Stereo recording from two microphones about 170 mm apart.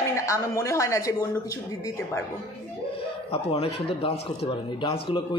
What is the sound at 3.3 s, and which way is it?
A woman's voice, 35° left (ahead or behind).